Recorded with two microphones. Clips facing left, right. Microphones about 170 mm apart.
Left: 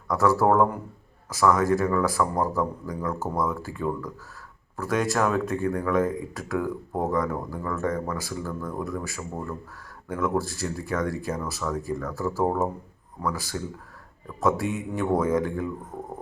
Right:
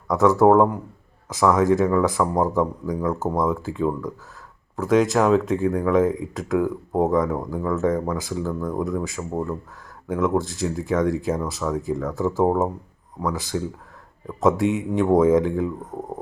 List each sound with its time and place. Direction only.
0.1 s speech: 20° right (ahead or behind)